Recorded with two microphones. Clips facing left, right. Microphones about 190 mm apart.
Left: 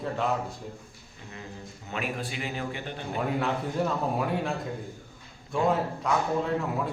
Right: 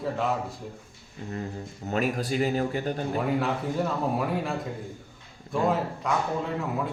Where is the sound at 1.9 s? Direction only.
40° right (ahead or behind).